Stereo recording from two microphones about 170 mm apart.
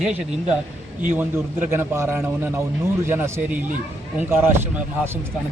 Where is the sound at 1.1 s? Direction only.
15° right (ahead or behind).